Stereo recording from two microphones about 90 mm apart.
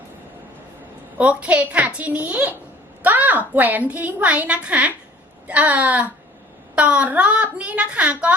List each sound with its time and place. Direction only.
1.2 s a woman's voice: 15° right (ahead or behind)